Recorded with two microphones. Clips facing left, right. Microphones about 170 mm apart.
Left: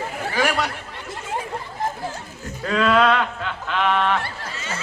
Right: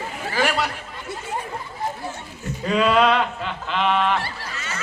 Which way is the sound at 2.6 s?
15° right (ahead or behind).